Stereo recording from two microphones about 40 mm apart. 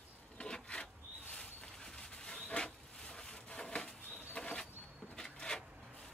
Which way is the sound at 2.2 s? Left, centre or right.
Left.